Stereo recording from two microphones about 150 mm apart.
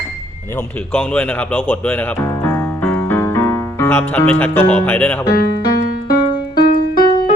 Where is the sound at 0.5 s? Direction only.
10° left (ahead or behind).